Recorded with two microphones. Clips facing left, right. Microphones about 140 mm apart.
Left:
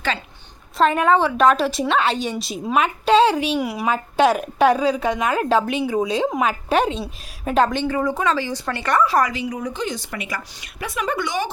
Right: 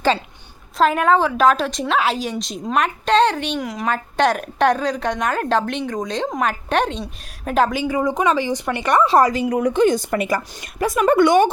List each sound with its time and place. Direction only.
0.8 s a woman's voice: centre (ahead or behind); by 9.3 s 25° right (ahead or behind)
9.3 s a woman's voice: 50° right (ahead or behind)
9.6 s a woman's voice: 60° right (ahead or behind)